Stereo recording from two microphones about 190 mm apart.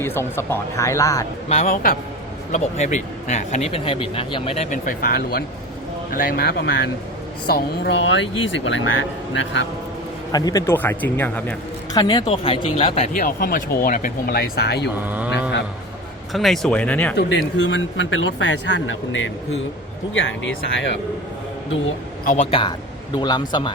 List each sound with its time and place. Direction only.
0.0 s speech: 10° left (ahead or behind)
1.5 s speech: 35° left (ahead or behind)
1.7 s speech: 50° left (ahead or behind)
2.5 s speech: 40° left (ahead or behind); by 8.8 s 80° left
10.3 s speech: 20° left (ahead or behind)
11.9 s speech: 20° left (ahead or behind)
13.2 s speech: 50° left (ahead or behind)
15.0 s speech: 10° right (ahead or behind)
16.3 s speech: centre (ahead or behind)
17.2 s speech: 70° left (ahead or behind)
22.2 s speech: 45° left (ahead or behind)
23.1 s speech: 20° left (ahead or behind)